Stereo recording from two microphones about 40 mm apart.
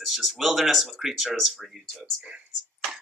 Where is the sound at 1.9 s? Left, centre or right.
Right.